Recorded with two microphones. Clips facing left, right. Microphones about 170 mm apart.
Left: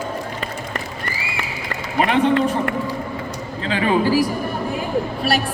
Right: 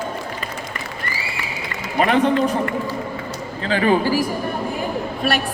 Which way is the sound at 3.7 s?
35° right (ahead or behind).